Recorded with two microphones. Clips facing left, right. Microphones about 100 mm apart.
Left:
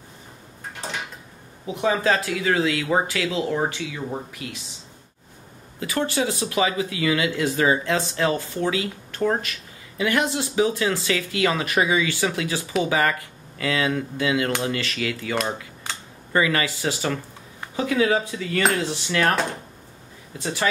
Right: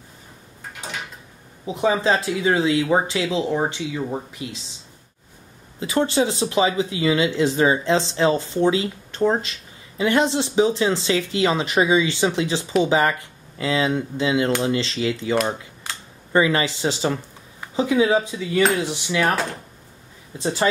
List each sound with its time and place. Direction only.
1.7 s speech: 20° right (ahead or behind)
5.8 s speech: 25° right (ahead or behind)
16.3 s speech: 25° right (ahead or behind)
18.7 s cutlery: 15° right (ahead or behind)
20.3 s speech: 25° right (ahead or behind)